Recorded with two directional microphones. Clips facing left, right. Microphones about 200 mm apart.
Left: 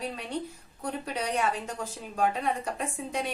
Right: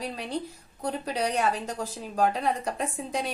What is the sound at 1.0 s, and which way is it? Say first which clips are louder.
A woman's voice: right 3 dB; 35° right (ahead or behind).